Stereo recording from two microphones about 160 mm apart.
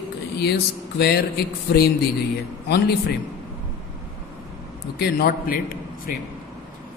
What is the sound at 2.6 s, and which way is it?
Speech, 90° left.